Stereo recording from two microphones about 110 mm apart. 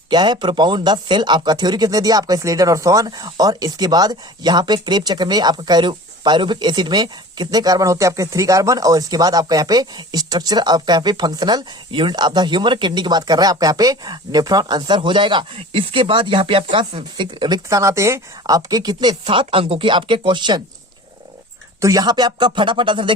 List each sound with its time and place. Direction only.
0.1 s speech: 40° right (ahead or behind)
17.7 s a woman's voice: 30° right (ahead or behind)
21.8 s a woman's voice: 30° right (ahead or behind); by 23.1 s 50° right (ahead or behind)